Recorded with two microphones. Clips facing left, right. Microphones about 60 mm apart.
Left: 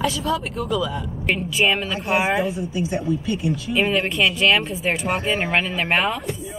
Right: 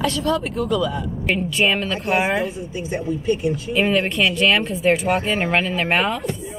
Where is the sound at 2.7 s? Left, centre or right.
Right.